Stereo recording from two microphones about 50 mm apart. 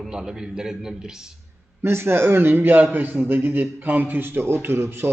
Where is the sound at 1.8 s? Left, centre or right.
Right.